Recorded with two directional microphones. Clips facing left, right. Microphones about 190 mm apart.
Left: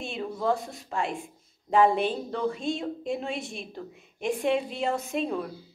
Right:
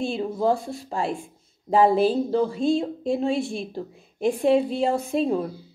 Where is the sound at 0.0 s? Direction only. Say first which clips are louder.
Right 6 dB; 35° right (ahead or behind).